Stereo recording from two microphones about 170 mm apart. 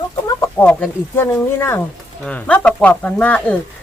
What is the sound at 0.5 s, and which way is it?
Speech, 10° left (ahead or behind).